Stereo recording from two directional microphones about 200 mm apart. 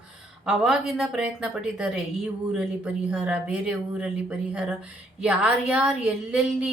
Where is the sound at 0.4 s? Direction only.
5° right (ahead or behind).